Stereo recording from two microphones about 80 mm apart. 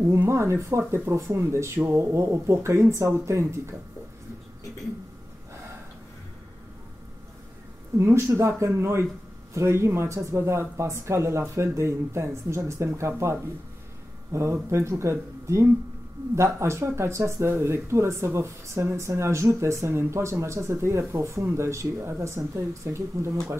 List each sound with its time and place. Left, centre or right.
0.3 s speech: right
8.0 s speech: right